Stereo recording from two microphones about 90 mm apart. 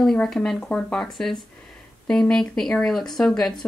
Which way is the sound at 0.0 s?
5° left (ahead or behind).